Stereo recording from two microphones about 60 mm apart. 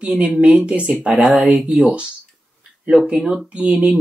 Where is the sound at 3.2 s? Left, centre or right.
Centre.